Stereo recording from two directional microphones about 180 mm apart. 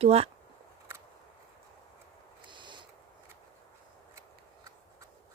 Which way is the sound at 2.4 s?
25° right (ahead or behind).